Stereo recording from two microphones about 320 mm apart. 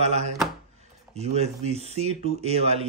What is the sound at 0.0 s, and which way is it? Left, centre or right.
A man's voice, right.